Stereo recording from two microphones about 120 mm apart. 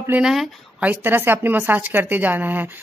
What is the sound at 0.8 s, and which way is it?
Speech, 15° right (ahead or behind).